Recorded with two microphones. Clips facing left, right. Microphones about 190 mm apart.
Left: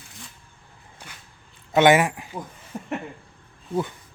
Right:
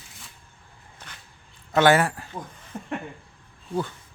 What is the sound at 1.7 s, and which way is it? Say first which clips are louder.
Speech: left 2 dB; 15° left (ahead or behind).